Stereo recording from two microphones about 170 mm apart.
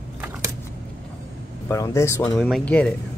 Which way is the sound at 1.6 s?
15° left (ahead or behind).